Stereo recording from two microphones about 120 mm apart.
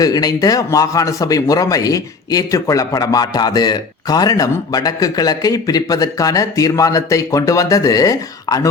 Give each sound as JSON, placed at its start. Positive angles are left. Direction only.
{"t": 0.0, "sound": "speech", "side_deg": 30}